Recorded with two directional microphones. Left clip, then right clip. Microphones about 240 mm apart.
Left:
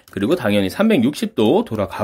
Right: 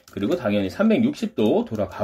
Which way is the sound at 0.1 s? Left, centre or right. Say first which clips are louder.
Left 5 dB; left.